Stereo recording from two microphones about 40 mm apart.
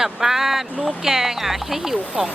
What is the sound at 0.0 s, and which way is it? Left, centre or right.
Speech, centre.